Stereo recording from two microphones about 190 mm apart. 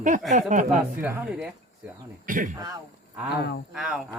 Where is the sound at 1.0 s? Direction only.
10° right (ahead or behind).